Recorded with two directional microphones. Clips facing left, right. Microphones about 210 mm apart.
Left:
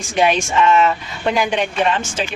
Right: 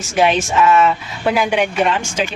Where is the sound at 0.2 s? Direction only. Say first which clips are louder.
Right 1 dB; 5° right (ahead or behind).